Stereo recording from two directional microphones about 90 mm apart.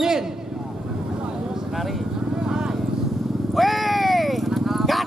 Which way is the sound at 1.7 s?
Centre (ahead or behind).